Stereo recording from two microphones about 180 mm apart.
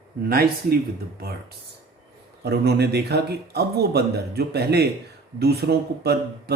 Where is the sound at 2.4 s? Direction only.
65° right (ahead or behind).